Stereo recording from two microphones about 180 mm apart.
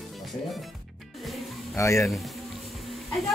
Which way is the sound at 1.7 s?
15° left (ahead or behind).